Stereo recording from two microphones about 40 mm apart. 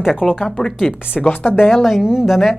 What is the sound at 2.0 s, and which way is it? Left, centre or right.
Speech, centre.